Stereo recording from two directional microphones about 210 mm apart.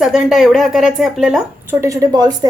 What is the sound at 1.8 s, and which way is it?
Speech, 15° right (ahead or behind).